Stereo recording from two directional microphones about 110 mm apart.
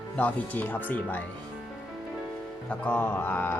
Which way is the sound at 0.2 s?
15° left (ahead or behind).